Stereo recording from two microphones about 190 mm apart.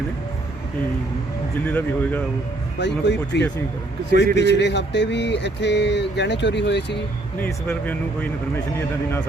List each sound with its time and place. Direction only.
1.6 s speech: 10° left (ahead or behind)
2.7 s speech: 65° left (ahead or behind)
7.3 s speech: 10° left (ahead or behind)